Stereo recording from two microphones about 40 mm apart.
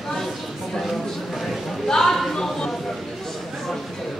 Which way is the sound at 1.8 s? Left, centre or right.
Centre.